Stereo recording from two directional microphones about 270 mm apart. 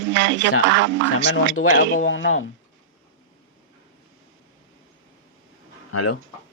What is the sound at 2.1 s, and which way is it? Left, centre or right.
Speech, left.